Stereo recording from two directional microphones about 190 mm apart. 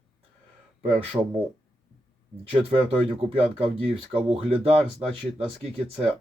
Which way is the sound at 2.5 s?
30° right (ahead or behind).